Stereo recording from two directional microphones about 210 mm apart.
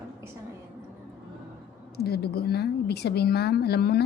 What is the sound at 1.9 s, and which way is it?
Speech, 50° left (ahead or behind).